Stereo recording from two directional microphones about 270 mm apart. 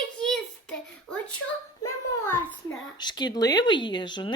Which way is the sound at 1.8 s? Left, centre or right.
Centre.